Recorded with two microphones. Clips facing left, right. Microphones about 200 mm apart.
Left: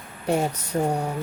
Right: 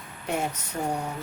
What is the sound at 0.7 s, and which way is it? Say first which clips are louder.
Speech: left 7 dB; 40° left (ahead or behind).